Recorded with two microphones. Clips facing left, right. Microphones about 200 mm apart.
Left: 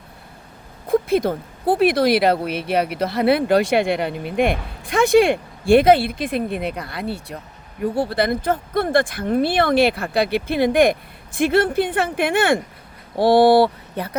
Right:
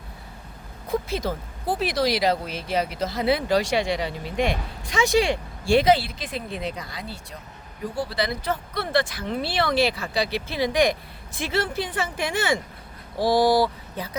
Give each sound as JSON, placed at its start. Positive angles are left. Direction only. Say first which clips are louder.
{"t": 0.9, "sound": "speech", "louder": "left 8 dB", "side_deg": 55}